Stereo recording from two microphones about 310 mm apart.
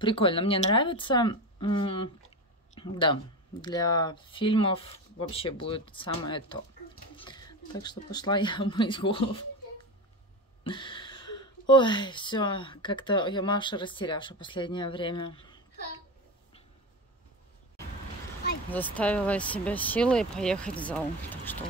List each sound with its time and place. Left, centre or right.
0.0 s speech: centre
10.6 s speech: centre
18.7 s speech: centre